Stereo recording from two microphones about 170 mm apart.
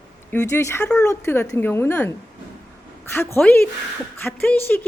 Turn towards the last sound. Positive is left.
turn(degrees=10)  # may be behind; listen again after turning